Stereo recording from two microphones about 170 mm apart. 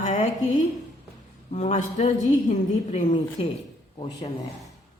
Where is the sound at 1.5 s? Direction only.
40° left (ahead or behind).